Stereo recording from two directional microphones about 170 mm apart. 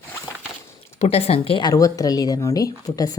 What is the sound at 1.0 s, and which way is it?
Speech, 35° left (ahead or behind).